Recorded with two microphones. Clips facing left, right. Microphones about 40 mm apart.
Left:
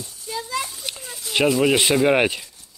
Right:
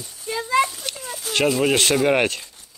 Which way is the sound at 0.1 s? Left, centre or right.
Right.